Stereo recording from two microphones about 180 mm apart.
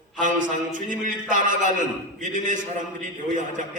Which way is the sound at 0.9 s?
45° right (ahead or behind).